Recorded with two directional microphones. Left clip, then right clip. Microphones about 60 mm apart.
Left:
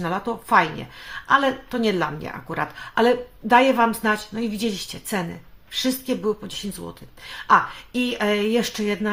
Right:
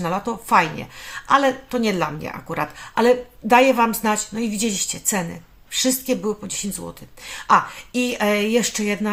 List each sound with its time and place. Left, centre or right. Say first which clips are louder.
0.3 s a woman's voice: right 1 dB; right
3.4 s a woman's voice: right 1 dB; right